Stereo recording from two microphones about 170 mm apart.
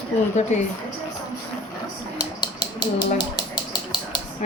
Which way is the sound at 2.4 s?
25° left (ahead or behind).